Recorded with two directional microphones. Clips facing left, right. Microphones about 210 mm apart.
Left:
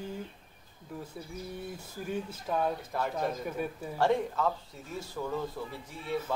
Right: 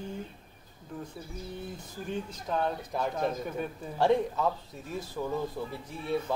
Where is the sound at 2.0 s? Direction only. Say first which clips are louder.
Even; 5° left (ahead or behind).